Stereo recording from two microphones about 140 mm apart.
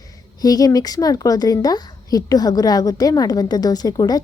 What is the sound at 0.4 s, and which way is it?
A woman's voice, 25° left (ahead or behind).